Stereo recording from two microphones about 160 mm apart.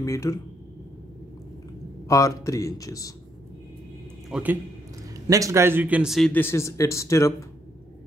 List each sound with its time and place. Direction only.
0.0 s speech: 20° left (ahead or behind)
2.0 s speech: 20° left (ahead or behind)
4.3 s a man's voice: 10° right (ahead or behind)
6.3 s speech: 15° left (ahead or behind)